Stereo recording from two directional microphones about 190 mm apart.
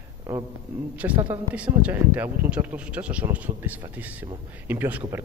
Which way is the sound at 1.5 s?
5° right (ahead or behind).